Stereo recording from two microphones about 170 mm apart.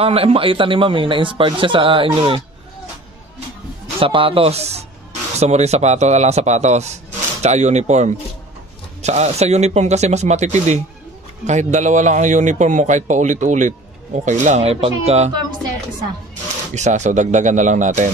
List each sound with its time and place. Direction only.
0.0 s speech: 35° right (ahead or behind)
3.8 s a man's voice: 30° right (ahead or behind)
16.7 s a man's voice: 45° right (ahead or behind)